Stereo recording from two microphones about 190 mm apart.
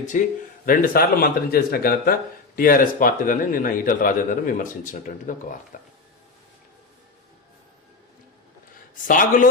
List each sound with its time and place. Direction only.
0.0 s a man's voice: 40° left (ahead or behind)
9.0 s a man's voice: 45° left (ahead or behind)